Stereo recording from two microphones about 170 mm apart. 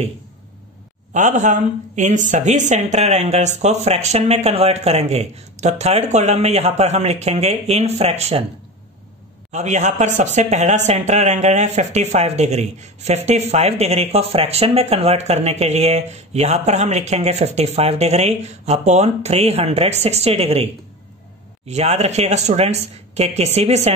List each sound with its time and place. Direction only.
1.1 s speech: 45° right (ahead or behind)
9.5 s speech: 40° right (ahead or behind)